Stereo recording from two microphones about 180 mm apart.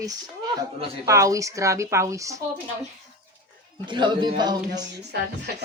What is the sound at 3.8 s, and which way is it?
Speech, 25° right (ahead or behind).